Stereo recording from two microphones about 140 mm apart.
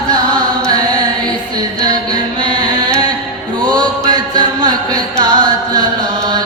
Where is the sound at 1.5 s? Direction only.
30° right (ahead or behind).